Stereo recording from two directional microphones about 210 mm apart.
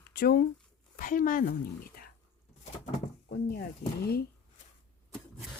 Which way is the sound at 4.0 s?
50° left (ahead or behind).